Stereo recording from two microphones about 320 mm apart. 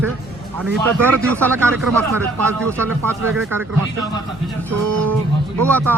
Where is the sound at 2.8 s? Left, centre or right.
Centre.